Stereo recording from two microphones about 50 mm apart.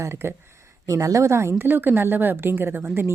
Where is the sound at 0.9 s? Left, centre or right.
Right.